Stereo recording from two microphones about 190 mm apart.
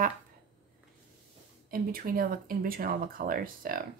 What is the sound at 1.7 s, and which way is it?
Speech, 50° right (ahead or behind).